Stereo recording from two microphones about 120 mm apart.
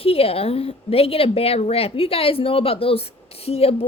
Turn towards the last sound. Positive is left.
turn(degrees=55)  # may be behind; listen again after turning